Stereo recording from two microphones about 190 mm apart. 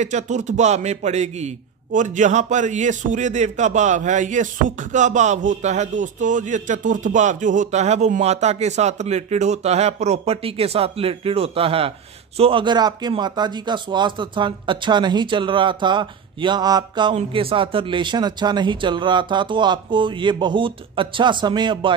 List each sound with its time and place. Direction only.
0.0 s a man's voice: 40° right (ahead or behind)